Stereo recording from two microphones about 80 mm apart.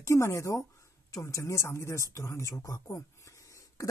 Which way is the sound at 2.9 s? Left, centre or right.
Left.